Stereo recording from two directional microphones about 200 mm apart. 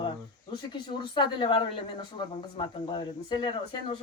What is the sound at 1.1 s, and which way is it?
Speech, 25° left (ahead or behind).